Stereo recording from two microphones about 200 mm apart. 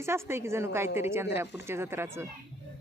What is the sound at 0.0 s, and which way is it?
Speech, 15° right (ahead or behind).